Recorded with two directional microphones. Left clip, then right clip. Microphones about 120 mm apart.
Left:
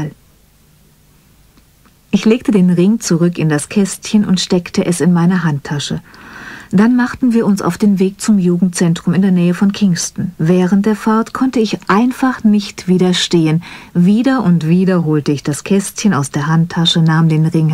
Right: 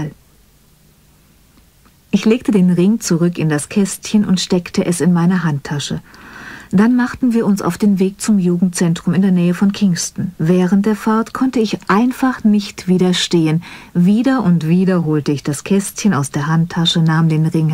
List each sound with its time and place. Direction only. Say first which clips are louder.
2.0 s speech: left 2 dB; 35° left (ahead or behind)